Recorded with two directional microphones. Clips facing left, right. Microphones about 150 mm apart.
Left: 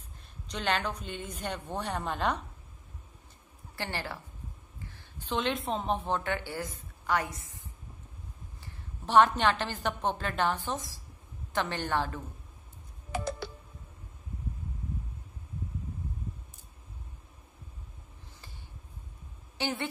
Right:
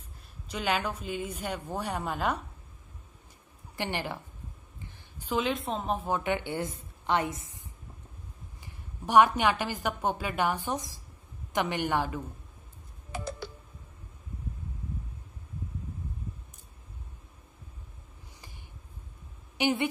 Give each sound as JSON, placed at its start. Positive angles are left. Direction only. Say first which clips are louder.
{"t": 0.5, "sound": "a woman's voice", "louder": "right 1 dB", "side_deg": -5}
{"t": 3.7, "sound": "a woman's voice", "louder": "right 3 dB", "side_deg": -15}
{"t": 8.6, "sound": "a woman's voice", "louder": "right 2 dB", "side_deg": -10}
{"t": 13.1, "sound": "typing", "louder": "left 3 dB", "side_deg": 75}
{"t": 19.5, "sound": "a woman's voice", "louder": "right 6 dB", "side_deg": -15}